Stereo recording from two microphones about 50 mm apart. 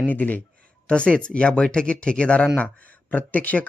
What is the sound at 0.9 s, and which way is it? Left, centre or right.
Speech, left.